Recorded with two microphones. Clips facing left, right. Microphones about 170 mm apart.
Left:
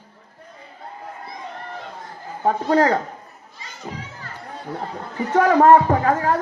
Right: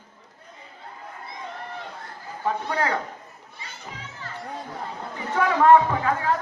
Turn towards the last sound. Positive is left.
turn(degrees=40)  # may be behind; listen again after turning